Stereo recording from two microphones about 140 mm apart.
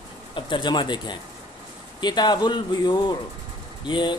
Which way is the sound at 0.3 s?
35° left (ahead or behind).